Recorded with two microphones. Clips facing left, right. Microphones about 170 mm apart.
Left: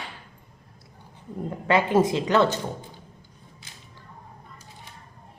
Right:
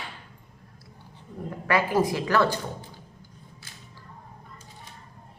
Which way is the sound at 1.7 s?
25° left (ahead or behind).